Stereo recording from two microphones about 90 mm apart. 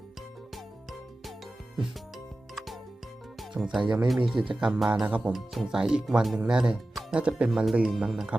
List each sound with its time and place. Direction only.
1.7 s music: centre (ahead or behind)
3.5 s speech: 5° right (ahead or behind)
5.0 s speech: 15° right (ahead or behind)
5.3 s speech: 5° right (ahead or behind)